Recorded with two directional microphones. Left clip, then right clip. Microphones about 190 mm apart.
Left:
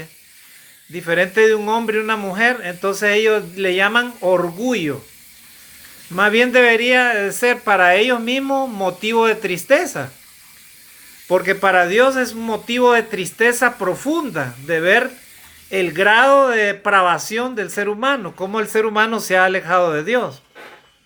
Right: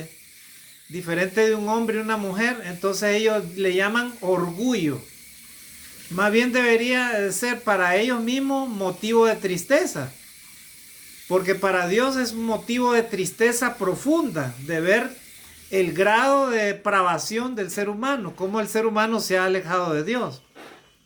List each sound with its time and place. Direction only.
0.9 s speech: 20° left (ahead or behind)
6.1 s speech: 20° left (ahead or behind)
11.3 s speech: 20° left (ahead or behind)